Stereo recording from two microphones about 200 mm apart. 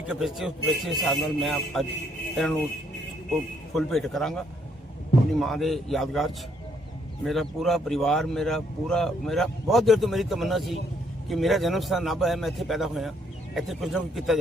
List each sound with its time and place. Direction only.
0.1 s speech: centre (ahead or behind)
3.8 s speech: centre (ahead or behind)
5.4 s speech: centre (ahead or behind)